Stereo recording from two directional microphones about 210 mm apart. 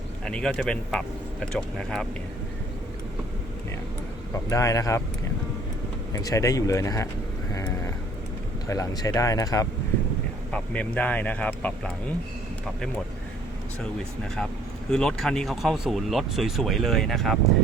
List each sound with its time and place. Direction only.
0.3 s speech: 5° left (ahead or behind)
4.4 s speech: 15° left (ahead or behind)
6.1 s speech: 15° left (ahead or behind)
7.5 s vehicle: 15° left (ahead or behind)
8.6 s speech: 15° left (ahead or behind)
10.5 s speech: 5° left (ahead or behind)
14.8 s speech: 5° left (ahead or behind)